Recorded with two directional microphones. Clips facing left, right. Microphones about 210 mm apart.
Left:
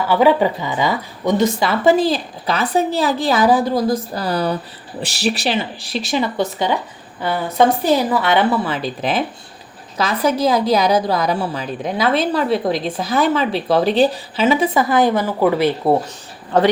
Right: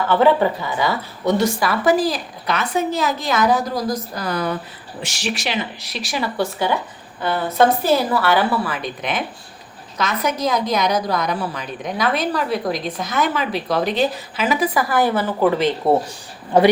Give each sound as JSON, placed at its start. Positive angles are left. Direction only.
{"t": 0.1, "sound": "speech", "side_deg": 15}
{"t": 16.5, "sound": "a man's voice", "side_deg": -10}